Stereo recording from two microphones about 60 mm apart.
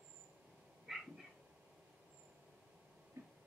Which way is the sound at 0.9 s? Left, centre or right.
Centre.